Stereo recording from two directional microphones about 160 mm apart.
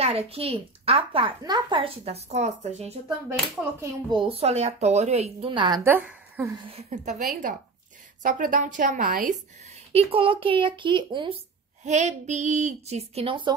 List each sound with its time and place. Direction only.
0.0 s a woman's voice: 40° right (ahead or behind)
4.1 s a woman's voice: 35° right (ahead or behind)
5.9 s a woman's voice: 10° right (ahead or behind)
6.7 s a woman's voice: 45° right (ahead or behind); by 9.4 s 60° right (ahead or behind)
9.9 s a woman's voice: 35° right (ahead or behind)
11.8 s speech: 45° right (ahead or behind)